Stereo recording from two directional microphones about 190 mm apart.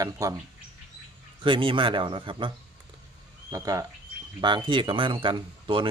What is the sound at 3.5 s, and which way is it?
A man's voice, 15° right (ahead or behind).